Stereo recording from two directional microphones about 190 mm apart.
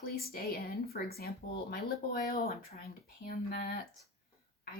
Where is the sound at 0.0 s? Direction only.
50° left (ahead or behind).